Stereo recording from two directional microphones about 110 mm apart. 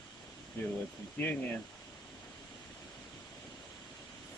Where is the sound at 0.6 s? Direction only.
20° left (ahead or behind).